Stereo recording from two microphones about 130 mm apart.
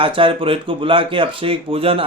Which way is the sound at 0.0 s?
40° right (ahead or behind).